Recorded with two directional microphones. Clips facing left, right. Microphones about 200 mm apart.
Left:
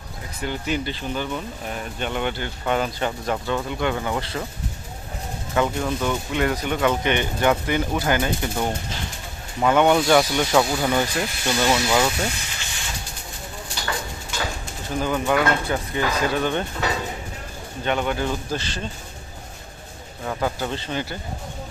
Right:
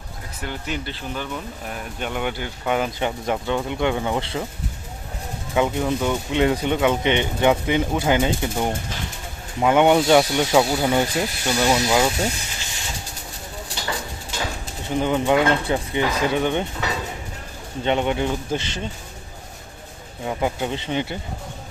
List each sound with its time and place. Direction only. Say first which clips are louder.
0.4 s speech: left 4 dB; centre (ahead or behind); by 4.4 s 20° right (ahead or behind)
5.5 s speech: right 2 dB; 15° right (ahead or behind)
14.8 s speech: right 3 dB; 20° right (ahead or behind)
17.8 s speech: right 2 dB; 25° right (ahead or behind)
20.2 s speech: right 2 dB; 15° right (ahead or behind)